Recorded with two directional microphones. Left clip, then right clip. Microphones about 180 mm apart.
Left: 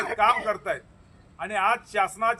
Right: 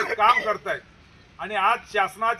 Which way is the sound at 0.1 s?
35° left (ahead or behind).